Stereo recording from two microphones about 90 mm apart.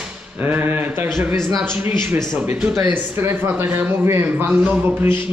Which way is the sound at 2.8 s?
20° right (ahead or behind).